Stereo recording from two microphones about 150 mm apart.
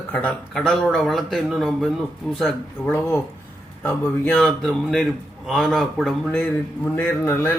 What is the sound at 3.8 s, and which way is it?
A man's voice, 10° left (ahead or behind).